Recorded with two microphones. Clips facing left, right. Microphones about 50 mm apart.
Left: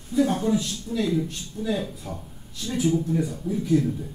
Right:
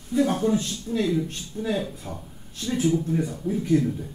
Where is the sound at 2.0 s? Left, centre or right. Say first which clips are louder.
Left 1 dB; centre.